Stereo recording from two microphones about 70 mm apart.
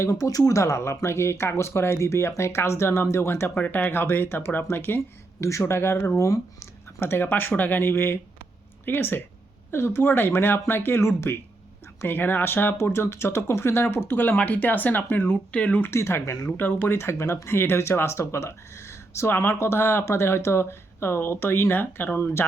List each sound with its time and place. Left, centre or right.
0.0 s speech: left
0.3 s speech: left
6.1 s speech: left
7.0 s speech: left
15.9 s speech: left